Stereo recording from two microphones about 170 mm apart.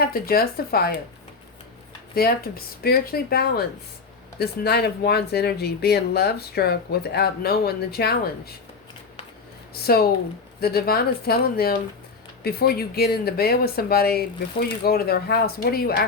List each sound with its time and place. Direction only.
0.0 s speech: 60° left (ahead or behind)
2.2 s speech: 65° left (ahead or behind)
9.8 s speech: 65° left (ahead or behind)